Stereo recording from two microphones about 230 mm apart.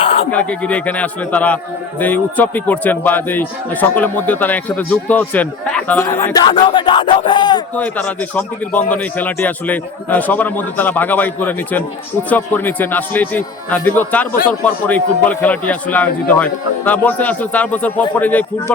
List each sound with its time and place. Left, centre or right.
0.0 s sheep: left
0.3 s a man's voice: centre
5.9 s a sound: centre
7.8 s a man's voice: centre